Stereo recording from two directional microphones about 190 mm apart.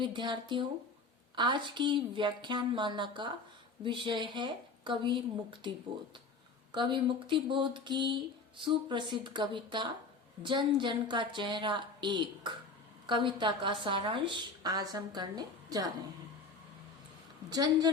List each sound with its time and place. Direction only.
0.0 s a woman's voice: 25° right (ahead or behind)
17.5 s a woman's voice: 20° right (ahead or behind)